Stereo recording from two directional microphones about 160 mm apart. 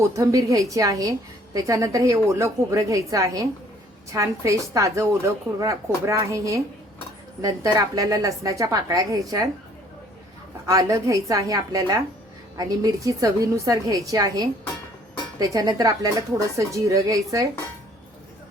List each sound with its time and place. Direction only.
0.0 s a woman's voice: 20° right (ahead or behind)
10.7 s a woman's voice: 20° right (ahead or behind)